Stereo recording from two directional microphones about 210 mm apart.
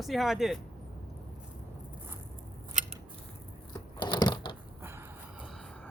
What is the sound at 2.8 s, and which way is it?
Scissors, 35° right (ahead or behind).